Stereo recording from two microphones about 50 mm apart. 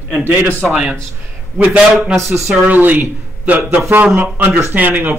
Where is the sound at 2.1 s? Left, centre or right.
Centre.